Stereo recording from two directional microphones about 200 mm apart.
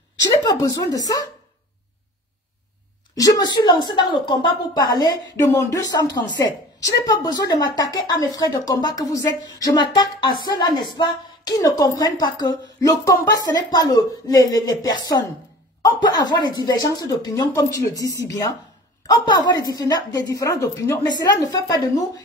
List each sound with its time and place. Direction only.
0.2 s a woman's voice: 15° left (ahead or behind)
3.2 s a woman's voice: 20° left (ahead or behind)